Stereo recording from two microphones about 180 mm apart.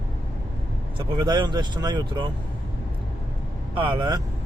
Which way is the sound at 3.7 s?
30° right (ahead or behind).